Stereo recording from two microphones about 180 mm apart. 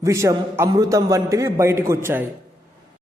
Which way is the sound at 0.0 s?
15° right (ahead or behind).